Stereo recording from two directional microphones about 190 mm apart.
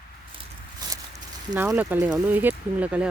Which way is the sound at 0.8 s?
20° right (ahead or behind).